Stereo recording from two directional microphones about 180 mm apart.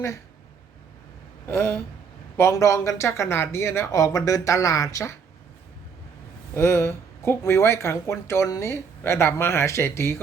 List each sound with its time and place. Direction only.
1.5 s speech: 15° left (ahead or behind)
6.5 s speech: 15° left (ahead or behind)